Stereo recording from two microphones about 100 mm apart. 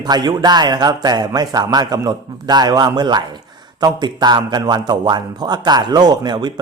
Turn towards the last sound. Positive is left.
turn(degrees=-45)  # may be behind; listen again after turning